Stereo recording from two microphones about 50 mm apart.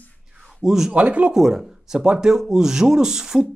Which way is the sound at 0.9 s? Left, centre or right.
Right.